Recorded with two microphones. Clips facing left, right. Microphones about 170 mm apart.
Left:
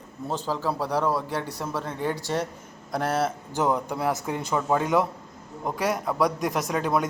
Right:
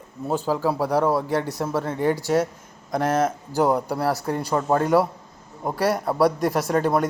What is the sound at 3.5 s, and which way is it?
Speech, 40° right (ahead or behind).